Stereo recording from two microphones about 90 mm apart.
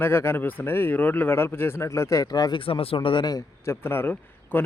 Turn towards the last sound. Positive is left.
turn(degrees=25)  # may be behind; listen again after turning